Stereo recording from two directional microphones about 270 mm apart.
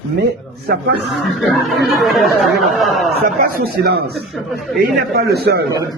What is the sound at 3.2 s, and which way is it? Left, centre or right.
Speech, right.